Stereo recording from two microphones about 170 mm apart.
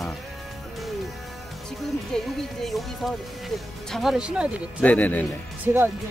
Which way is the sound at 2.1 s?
5° left (ahead or behind).